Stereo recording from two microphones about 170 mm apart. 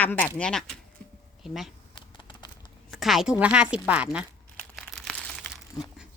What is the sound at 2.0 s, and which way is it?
Typing, 30° left (ahead or behind).